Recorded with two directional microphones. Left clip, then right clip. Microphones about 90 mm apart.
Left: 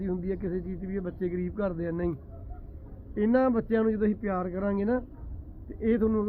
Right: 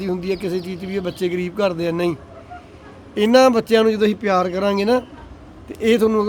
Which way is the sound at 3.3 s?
25° right (ahead or behind).